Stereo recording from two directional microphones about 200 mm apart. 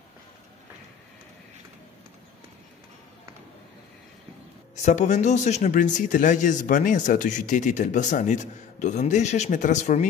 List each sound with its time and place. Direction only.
4.7 s speech: 35° left (ahead or behind)